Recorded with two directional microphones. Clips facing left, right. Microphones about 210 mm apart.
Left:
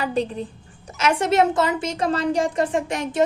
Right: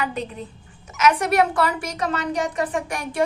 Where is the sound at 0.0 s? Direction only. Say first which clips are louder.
Left 4 dB; 35° left (ahead or behind).